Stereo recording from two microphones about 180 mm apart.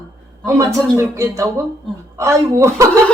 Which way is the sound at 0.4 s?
15° right (ahead or behind).